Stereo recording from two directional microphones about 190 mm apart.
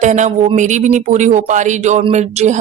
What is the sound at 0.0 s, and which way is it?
Speech, 40° right (ahead or behind).